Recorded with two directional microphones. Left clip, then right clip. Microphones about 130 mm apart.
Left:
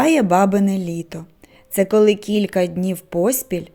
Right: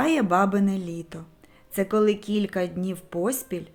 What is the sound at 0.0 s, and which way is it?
Speech, 40° left (ahead or behind).